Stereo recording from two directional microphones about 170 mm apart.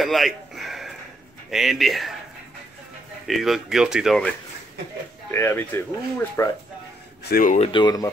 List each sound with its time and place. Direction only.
0.0 s a sound: centre (ahead or behind)
1.5 s speech: centre (ahead or behind)
3.3 s speech: centre (ahead or behind)
5.3 s speech: 15° left (ahead or behind)
7.2 s speech: 55° left (ahead or behind)
7.6 s speech: 25° left (ahead or behind)